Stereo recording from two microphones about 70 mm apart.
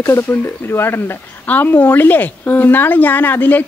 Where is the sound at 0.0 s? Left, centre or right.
Left.